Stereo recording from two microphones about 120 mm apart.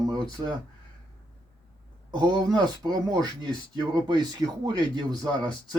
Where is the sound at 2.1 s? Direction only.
35° right (ahead or behind).